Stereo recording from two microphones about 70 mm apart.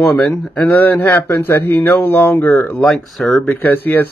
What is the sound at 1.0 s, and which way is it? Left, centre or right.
Speech, left.